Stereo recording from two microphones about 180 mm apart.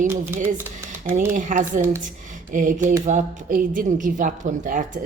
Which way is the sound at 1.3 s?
45° right (ahead or behind).